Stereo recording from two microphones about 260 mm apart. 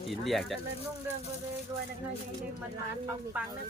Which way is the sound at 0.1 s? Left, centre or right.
Centre.